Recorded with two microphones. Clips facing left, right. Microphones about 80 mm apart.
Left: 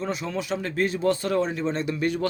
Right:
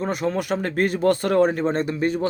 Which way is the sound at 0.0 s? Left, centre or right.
Right.